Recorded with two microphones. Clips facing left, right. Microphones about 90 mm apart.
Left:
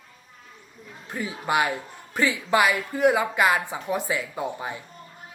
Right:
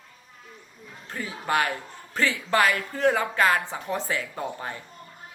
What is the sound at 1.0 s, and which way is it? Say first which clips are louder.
A woman's voice: left 2 dB; 15° left (ahead or behind).